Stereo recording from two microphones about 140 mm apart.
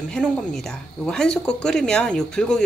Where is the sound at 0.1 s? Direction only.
5° left (ahead or behind).